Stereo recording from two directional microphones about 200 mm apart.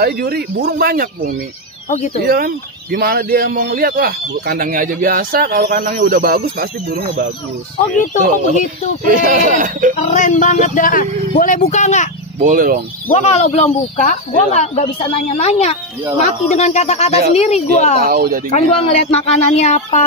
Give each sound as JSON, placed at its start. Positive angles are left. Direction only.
{"t": 0.0, "sound": "speech", "side_deg": -50}
{"t": 9.9, "sound": "speech", "side_deg": 40}
{"t": 12.4, "sound": "speech", "side_deg": -40}
{"t": 13.1, "sound": "speech", "side_deg": 35}
{"t": 18.0, "sound": "speech", "side_deg": -50}
{"t": 18.5, "sound": "speech", "side_deg": 35}